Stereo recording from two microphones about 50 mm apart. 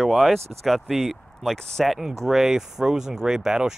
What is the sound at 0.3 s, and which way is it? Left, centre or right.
Speech, centre.